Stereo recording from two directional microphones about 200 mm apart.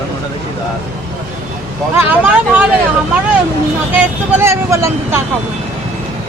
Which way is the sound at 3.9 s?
10° right (ahead or behind).